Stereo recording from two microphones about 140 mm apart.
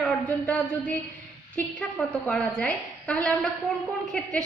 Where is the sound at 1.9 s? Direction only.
10° left (ahead or behind).